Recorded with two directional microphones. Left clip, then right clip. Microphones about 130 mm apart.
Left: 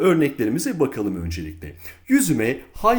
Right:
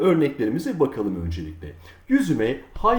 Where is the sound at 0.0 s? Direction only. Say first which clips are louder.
Left 1 dB; 30° left (ahead or behind).